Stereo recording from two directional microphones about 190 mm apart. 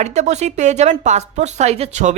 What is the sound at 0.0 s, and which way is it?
A woman's voice, 35° right (ahead or behind).